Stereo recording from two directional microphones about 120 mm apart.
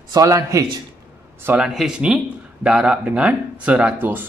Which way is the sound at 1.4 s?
15° right (ahead or behind).